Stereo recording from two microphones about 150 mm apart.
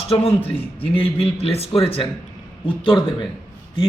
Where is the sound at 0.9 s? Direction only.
40° left (ahead or behind).